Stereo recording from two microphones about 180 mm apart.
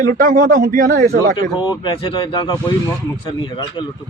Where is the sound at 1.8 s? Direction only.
25° left (ahead or behind).